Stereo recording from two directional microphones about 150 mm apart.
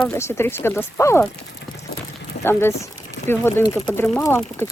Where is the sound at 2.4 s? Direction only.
15° left (ahead or behind).